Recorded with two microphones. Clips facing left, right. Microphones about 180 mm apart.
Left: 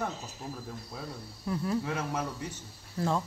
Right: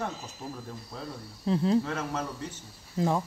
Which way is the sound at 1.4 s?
25° right (ahead or behind).